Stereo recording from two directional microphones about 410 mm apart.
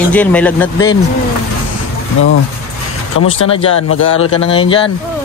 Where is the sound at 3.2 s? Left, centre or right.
Left.